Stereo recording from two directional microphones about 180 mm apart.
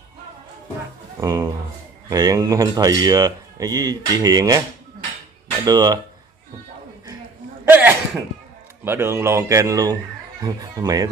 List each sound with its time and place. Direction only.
1.2 s speech: 20° right (ahead or behind)
5.7 s speech: 20° right (ahead or behind)
7.6 s a sound: 10° right (ahead or behind)
8.8 s speech: 15° right (ahead or behind)